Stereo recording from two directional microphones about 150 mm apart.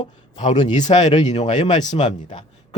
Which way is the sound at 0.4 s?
50° left (ahead or behind).